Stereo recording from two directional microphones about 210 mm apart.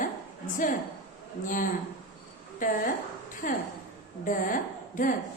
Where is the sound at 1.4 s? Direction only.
40° left (ahead or behind).